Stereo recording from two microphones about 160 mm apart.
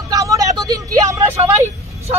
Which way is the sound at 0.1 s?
20° right (ahead or behind).